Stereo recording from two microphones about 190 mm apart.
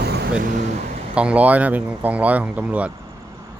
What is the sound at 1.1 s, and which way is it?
Speech, 5° right (ahead or behind).